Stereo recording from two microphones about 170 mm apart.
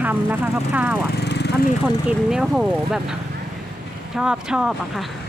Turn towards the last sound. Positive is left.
turn(degrees=-5)  # may be behind; listen again after turning